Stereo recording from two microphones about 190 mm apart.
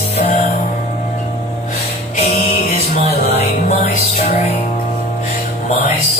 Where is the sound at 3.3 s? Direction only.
35° left (ahead or behind).